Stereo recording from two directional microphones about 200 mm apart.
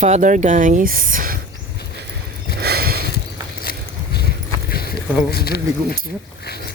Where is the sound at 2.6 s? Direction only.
50° right (ahead or behind).